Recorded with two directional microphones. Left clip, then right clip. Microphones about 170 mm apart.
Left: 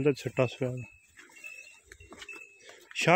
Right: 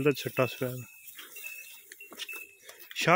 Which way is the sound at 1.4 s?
45° left (ahead or behind).